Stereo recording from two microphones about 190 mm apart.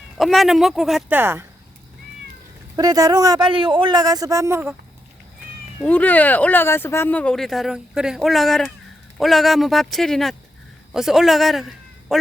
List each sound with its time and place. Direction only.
0.2 s speech: centre (ahead or behind)
1.2 s speech: 15° right (ahead or behind)
2.7 s a man's voice: 20° right (ahead or behind)
5.8 s a man's voice: 10° left (ahead or behind)